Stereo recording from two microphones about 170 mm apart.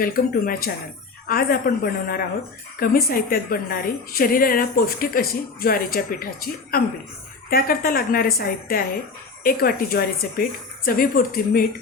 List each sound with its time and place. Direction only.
0.0 s a woman's voice: 60° left (ahead or behind)